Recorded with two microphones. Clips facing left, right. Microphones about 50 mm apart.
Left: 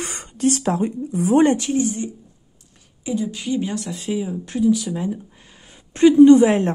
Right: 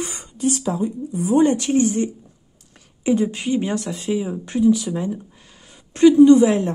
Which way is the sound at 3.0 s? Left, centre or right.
Right.